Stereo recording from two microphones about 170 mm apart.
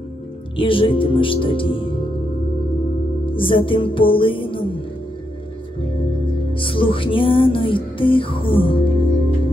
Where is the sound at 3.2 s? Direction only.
30° left (ahead or behind).